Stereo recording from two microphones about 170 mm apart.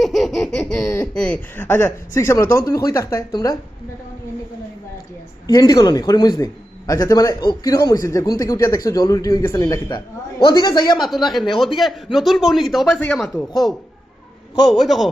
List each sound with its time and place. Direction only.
0.0 s a sound: centre (ahead or behind)
1.1 s speech: 5° left (ahead or behind); by 3.6 s 20° left (ahead or behind)
5.5 s a man's voice: 25° left (ahead or behind)
10.9 s speech: centre (ahead or behind)
14.6 s speech: centre (ahead or behind)